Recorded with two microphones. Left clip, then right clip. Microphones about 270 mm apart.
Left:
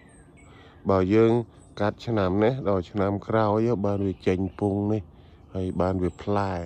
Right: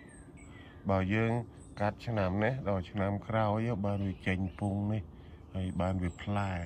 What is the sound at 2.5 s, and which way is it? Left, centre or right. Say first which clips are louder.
Speech: left 9 dB; left.